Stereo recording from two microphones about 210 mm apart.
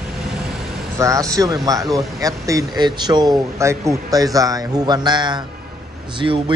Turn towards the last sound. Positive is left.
turn(degrees=-25)  # may be behind; listen again after turning